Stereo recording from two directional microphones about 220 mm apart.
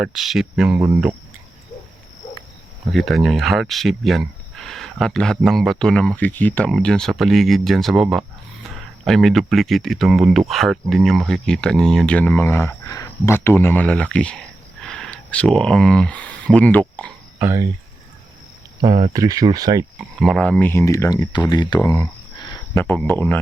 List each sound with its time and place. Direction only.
0.0 s speech: centre (ahead or behind)
0.8 s speech: 10° right (ahead or behind)
2.9 s speech: centre (ahead or behind)
17.4 s speech: 15° right (ahead or behind)
18.9 s speech: 25° right (ahead or behind)
19.1 s speech: 15° right (ahead or behind)
20.0 s speech: centre (ahead or behind)